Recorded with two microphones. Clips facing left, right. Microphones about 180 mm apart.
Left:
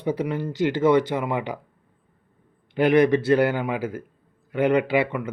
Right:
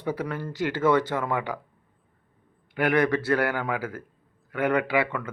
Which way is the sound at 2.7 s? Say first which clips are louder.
Left 5 dB; 20° left (ahead or behind).